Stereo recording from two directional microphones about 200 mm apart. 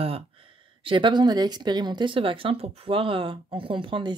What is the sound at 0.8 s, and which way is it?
Speech, 25° right (ahead or behind).